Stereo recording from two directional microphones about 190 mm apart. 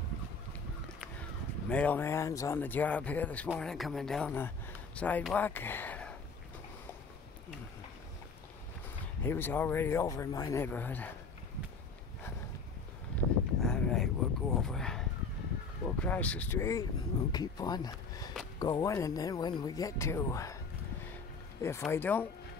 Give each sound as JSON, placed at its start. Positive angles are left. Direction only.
{"t": 1.7, "sound": "speech", "side_deg": 5}
{"t": 9.2, "sound": "speech", "side_deg": 10}
{"t": 13.1, "sound": "a sound", "side_deg": 5}
{"t": 15.8, "sound": "speech", "side_deg": 5}
{"t": 21.5, "sound": "speech", "side_deg": 15}